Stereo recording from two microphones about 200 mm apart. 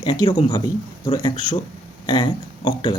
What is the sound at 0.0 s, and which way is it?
A man's voice, 20° left (ahead or behind).